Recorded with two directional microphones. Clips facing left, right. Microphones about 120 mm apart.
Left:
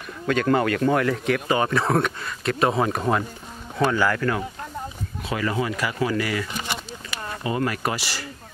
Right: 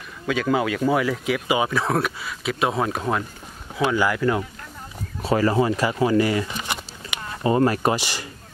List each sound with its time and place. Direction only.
0.3 s speech: 5° right (ahead or behind)
3.7 s speech: 15° right (ahead or behind)
5.2 s speech: 35° right (ahead or behind)
7.4 s speech: 35° right (ahead or behind)
7.9 s speech: 20° right (ahead or behind)